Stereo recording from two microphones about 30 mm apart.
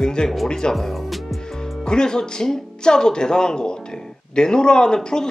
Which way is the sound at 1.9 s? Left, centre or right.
Left.